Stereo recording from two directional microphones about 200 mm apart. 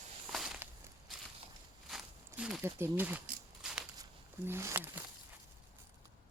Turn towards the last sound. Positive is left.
turn(degrees=-10)  # may be behind; listen again after turning